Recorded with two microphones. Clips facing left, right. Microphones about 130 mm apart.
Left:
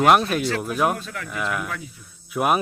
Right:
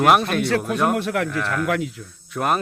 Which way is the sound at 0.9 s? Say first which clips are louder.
Right 10 dB; 65° right (ahead or behind).